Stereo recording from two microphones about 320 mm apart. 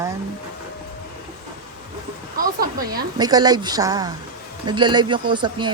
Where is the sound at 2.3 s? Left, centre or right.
Right.